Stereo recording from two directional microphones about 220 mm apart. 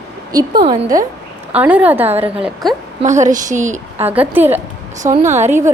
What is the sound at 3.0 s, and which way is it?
Speech, 35° right (ahead or behind).